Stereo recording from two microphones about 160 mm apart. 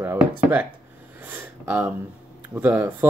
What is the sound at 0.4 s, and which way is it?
Speech, 10° right (ahead or behind).